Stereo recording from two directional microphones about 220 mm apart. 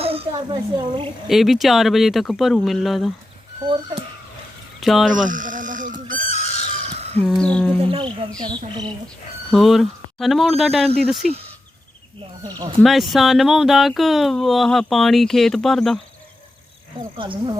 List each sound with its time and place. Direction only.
0.0 s speech: 25° right (ahead or behind)
1.3 s speech: centre (ahead or behind)
4.8 s speech: centre (ahead or behind)
5.1 s a sound: 35° right (ahead or behind)
6.2 s neigh: 30° left (ahead or behind)
7.2 s speech: 5° left (ahead or behind)
7.8 s speech: 25° right (ahead or behind)
9.5 s speech: centre (ahead or behind)
12.4 s speech: 15° right (ahead or behind)
12.8 s speech: centre (ahead or behind)
17.2 s speech: 20° right (ahead or behind)